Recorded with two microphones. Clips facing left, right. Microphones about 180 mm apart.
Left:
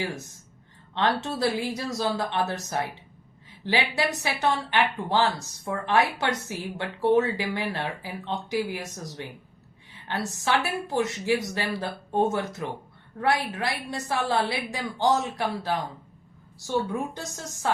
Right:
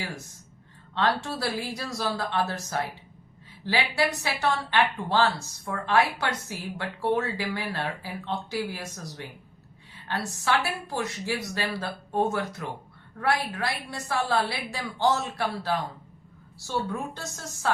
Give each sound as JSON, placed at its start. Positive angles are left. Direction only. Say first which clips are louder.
{"t": 0.9, "sound": "a woman's voice", "louder": "left 1 dB", "side_deg": 20}